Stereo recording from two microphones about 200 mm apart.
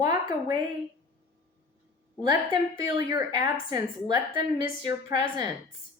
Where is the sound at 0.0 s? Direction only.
20° right (ahead or behind).